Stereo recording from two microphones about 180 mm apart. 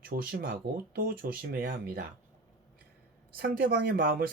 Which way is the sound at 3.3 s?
55° right (ahead or behind).